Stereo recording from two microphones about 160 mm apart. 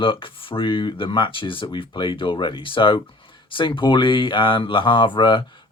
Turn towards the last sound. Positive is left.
turn(degrees=30)  # may be behind; listen again after turning